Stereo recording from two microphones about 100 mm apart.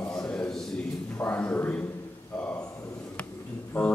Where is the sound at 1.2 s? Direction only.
20° left (ahead or behind).